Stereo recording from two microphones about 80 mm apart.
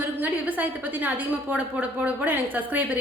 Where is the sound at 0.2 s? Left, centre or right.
Right.